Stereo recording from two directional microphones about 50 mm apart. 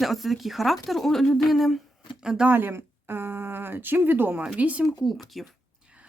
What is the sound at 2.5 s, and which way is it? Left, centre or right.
Speech, right.